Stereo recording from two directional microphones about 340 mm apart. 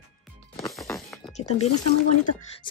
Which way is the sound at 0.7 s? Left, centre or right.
Centre.